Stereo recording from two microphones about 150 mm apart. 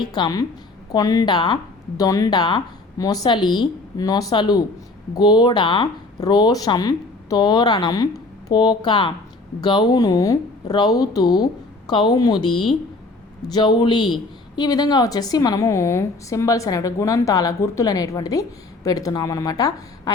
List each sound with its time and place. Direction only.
0.1 s speech: 25° left (ahead or behind)